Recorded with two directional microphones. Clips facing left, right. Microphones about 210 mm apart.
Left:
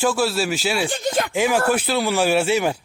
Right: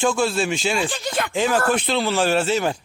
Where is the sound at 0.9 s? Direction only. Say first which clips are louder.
Left 4 dB; 45° left (ahead or behind).